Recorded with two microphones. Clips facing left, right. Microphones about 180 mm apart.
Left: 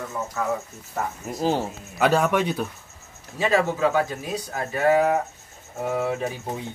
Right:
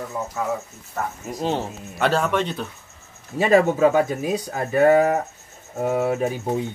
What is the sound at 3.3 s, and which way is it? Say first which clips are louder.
Speech: right 5 dB; 55° right (ahead or behind).